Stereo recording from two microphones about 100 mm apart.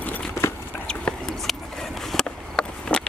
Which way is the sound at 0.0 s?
15° left (ahead or behind).